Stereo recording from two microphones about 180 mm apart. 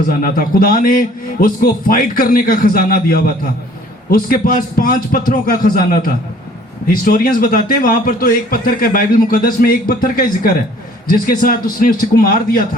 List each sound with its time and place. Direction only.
0.1 s a man's voice: 55° left (ahead or behind)